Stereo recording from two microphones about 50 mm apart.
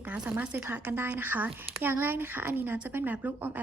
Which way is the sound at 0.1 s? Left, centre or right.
Right.